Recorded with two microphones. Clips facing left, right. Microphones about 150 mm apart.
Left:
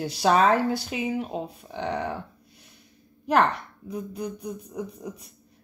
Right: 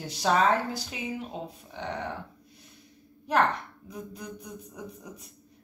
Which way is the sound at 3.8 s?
65° left (ahead or behind).